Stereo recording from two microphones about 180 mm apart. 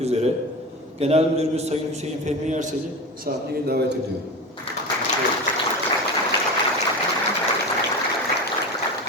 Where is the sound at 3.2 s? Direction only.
60° right (ahead or behind).